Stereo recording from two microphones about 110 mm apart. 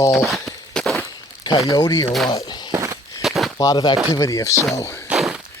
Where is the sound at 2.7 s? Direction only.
25° right (ahead or behind).